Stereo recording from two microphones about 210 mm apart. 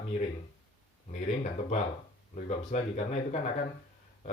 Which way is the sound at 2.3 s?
30° left (ahead or behind).